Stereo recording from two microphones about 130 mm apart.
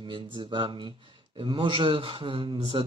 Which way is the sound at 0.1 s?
40° right (ahead or behind).